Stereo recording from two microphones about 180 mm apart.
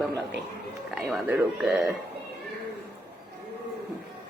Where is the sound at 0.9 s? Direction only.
5° right (ahead or behind).